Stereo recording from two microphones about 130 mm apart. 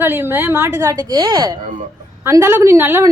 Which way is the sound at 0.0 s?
15° right (ahead or behind).